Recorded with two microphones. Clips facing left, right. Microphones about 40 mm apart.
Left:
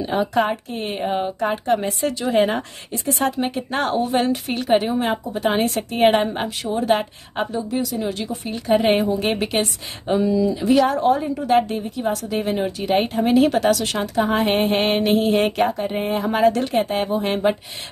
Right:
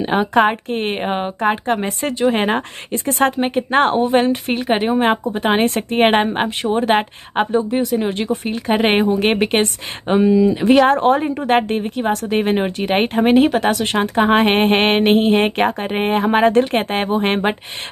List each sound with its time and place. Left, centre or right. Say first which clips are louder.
0.0 s a woman's voice: right 5 dB; right
10.5 s speech: right 5 dB; right
13.5 s a woman's voice: right 1 dB; right
15.6 s speech: right 3 dB; right